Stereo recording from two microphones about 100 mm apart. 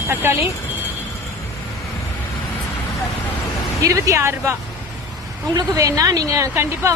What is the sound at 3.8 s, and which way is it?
Speech, 30° right (ahead or behind).